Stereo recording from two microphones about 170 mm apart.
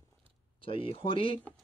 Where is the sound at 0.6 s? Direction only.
30° left (ahead or behind).